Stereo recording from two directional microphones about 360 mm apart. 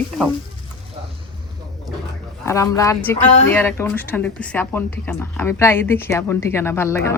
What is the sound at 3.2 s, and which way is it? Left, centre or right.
Speech, centre.